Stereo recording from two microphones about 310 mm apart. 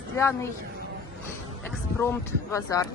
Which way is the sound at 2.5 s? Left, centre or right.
Centre.